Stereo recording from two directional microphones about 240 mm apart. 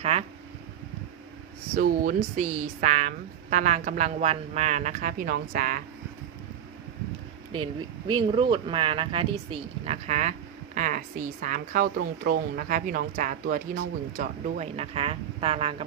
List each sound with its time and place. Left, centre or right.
0.0 s speech: right
1.7 s speech: right
7.5 s speech: centre